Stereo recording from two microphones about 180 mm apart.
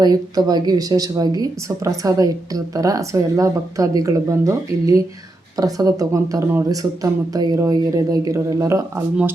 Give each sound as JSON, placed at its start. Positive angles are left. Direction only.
{"t": 0.0, "sound": "speech", "side_deg": -20}